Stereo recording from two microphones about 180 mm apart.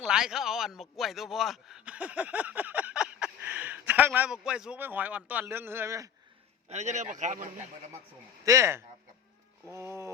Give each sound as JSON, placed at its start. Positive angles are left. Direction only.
{"t": 0.0, "sound": "a man's voice", "side_deg": -5}
{"t": 6.7, "sound": "a man's voice", "side_deg": -40}
{"t": 8.4, "sound": "a sound", "side_deg": -15}